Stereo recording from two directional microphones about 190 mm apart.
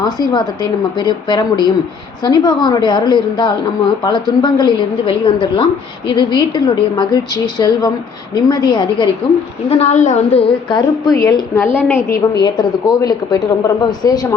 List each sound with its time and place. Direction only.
0.0 s a woman's voice: 20° left (ahead or behind)
9.6 s a woman's voice: 35° left (ahead or behind)